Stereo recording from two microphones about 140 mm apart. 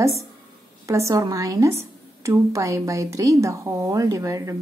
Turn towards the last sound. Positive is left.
turn(degrees=-20)  # may be behind; listen again after turning